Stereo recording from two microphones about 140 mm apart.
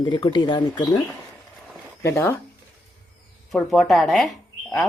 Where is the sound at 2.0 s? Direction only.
15° left (ahead or behind).